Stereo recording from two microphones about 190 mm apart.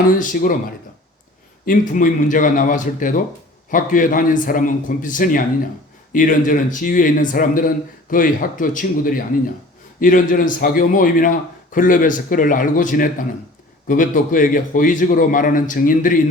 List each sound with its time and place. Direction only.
0.0 s a man's voice: 45° left (ahead or behind)
1.6 s a man's voice: 45° left (ahead or behind)